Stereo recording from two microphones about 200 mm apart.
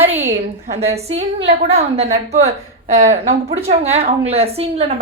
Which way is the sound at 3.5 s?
30° right (ahead or behind).